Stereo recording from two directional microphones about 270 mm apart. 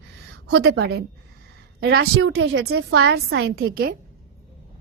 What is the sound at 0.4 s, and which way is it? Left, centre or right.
A woman's voice, right.